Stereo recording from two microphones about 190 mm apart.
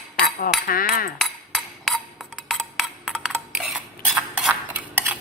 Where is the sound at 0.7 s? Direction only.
50° left (ahead or behind).